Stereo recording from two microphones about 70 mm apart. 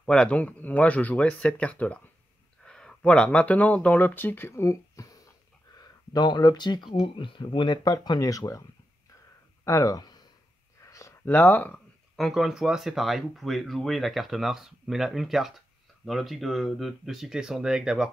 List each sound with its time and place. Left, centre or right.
0.0 s speech: centre; by 5.2 s left
5.8 s speech: left
8.3 s speech: left
9.7 s speech: left
10.8 s a sound: left
11.2 s speech: left
12.2 s speech: centre